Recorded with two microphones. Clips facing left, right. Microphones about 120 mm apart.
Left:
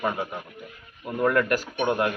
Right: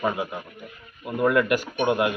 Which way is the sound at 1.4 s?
40° left (ahead or behind).